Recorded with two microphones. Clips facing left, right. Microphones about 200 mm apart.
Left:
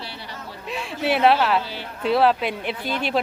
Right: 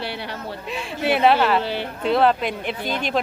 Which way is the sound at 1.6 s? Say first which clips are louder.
Right 8 dB; 65° right (ahead or behind).